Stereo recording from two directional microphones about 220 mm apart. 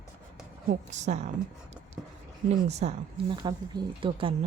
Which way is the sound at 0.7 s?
30° right (ahead or behind).